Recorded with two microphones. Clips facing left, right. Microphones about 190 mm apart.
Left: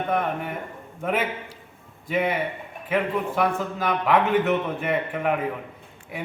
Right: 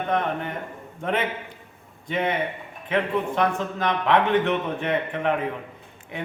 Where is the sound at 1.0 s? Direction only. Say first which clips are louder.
Even; 5° left (ahead or behind).